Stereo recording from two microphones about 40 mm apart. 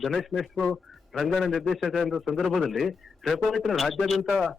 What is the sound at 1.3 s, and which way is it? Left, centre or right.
A man's voice, centre.